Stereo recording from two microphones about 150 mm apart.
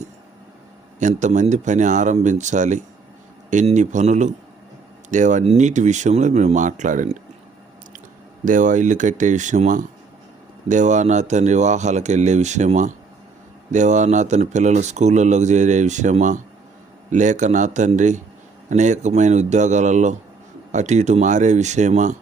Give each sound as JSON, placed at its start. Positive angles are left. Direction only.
{"t": 0.9, "sound": "speech", "side_deg": -55}
{"t": 8.4, "sound": "speech", "side_deg": -60}